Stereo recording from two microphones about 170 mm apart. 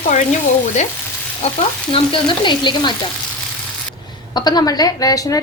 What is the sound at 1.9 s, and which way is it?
A woman's voice, 30° left (ahead or behind).